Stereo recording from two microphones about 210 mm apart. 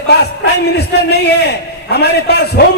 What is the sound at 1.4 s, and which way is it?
Speech, 50° left (ahead or behind).